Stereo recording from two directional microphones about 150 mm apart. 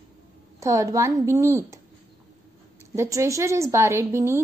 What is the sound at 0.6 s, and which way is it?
A woman's voice, 20° right (ahead or behind).